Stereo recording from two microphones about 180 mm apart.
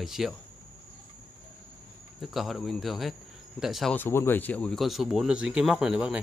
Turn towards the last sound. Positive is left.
turn(degrees=-5)  # may be behind; listen again after turning